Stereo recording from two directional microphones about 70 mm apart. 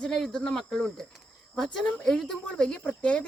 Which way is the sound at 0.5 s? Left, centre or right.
Centre.